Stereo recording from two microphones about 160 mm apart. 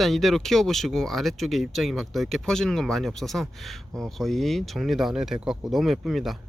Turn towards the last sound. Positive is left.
turn(degrees=0)  # may be behind; listen again after turning